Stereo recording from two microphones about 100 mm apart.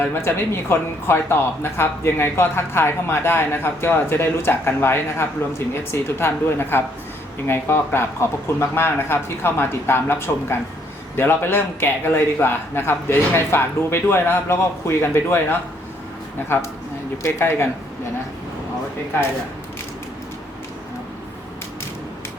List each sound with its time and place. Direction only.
0.0 s speech: 20° left (ahead or behind)
17.2 s speech: 25° left (ahead or behind)